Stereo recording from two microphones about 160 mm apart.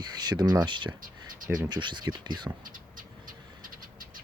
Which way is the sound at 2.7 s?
60° right (ahead or behind).